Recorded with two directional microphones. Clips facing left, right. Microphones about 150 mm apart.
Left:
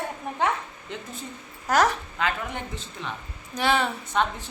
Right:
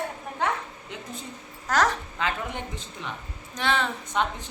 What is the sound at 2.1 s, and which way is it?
Speech, 20° right (ahead or behind).